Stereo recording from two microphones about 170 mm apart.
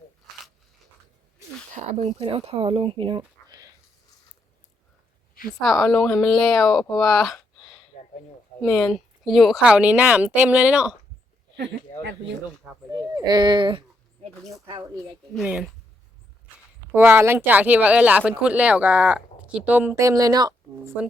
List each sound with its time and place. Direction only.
1.7 s speech: 45° right (ahead or behind); by 3.7 s 25° right (ahead or behind)
5.5 s a woman's voice: centre (ahead or behind)
11.5 s speech: 90° right
12.9 s speech: 20° right (ahead or behind)
15.4 s a woman's voice: 5° right (ahead or behind)
16.9 s speech: 15° right (ahead or behind)